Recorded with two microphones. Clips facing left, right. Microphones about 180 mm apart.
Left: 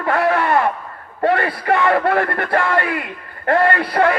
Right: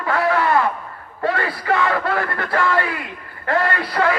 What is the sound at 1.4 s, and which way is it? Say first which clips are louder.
A man's voice: left 2 dB; 60° left (ahead or behind).